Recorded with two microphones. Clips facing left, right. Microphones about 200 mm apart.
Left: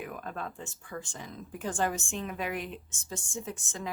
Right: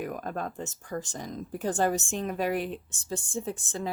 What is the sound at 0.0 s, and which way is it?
Speech, 45° right (ahead or behind).